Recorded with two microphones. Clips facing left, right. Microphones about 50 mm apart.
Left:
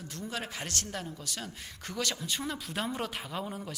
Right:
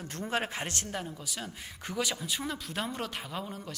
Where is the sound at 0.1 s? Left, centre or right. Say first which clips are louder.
Right 6 dB; right.